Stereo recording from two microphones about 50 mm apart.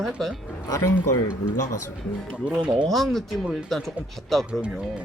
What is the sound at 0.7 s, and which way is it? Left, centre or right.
Speech, left.